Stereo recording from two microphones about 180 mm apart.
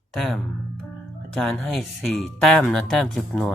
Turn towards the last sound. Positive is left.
turn(degrees=5)  # may be behind; listen again after turning